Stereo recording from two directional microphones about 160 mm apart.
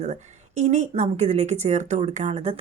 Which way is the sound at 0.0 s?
45° right (ahead or behind).